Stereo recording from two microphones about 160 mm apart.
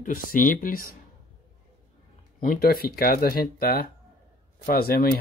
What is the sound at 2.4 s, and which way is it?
Speech, 65° left (ahead or behind).